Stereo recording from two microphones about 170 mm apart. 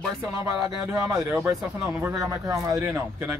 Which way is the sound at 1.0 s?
20° right (ahead or behind).